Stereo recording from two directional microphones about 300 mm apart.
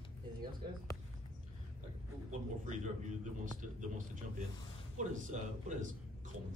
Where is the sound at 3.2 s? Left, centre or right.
Right.